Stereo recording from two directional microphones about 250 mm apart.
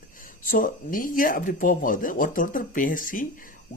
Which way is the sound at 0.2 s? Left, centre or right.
Left.